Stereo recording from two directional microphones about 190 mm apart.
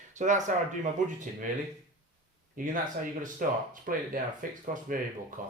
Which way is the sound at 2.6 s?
45° right (ahead or behind).